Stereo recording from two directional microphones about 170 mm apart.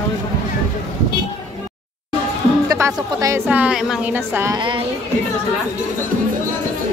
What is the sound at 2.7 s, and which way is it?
Speech, 20° right (ahead or behind).